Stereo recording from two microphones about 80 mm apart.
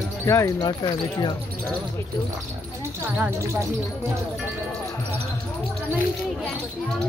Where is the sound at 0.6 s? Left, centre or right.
Left.